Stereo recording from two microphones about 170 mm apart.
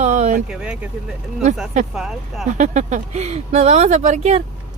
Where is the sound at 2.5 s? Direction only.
45° right (ahead or behind).